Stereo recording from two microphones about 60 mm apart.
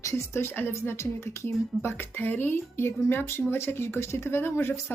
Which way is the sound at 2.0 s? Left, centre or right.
Left.